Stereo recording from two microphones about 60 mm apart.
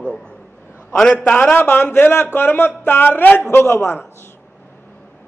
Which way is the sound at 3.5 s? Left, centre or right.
Left.